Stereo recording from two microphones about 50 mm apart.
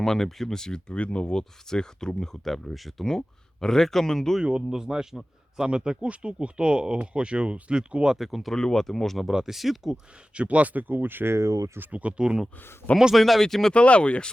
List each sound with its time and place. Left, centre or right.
0.0 s speech: centre
4.7 s speech: centre
8.1 s speech: centre
8.5 s speech: centre
9.2 s speech: centre
10.3 s speech: right
11.3 s speech: right
11.8 s speech: right
13.1 s speech: centre
13.7 s speech: left